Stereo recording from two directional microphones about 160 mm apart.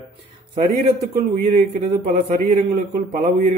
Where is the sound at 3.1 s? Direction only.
60° right (ahead or behind).